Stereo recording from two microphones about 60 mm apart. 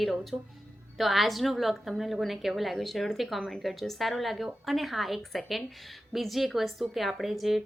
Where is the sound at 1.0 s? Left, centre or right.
Centre.